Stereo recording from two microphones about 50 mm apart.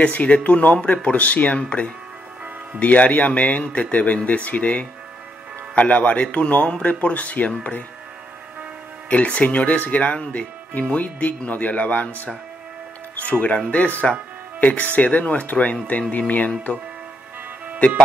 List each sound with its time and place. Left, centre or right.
0.0 s speech: left
9.1 s speech: left
13.2 s speech: left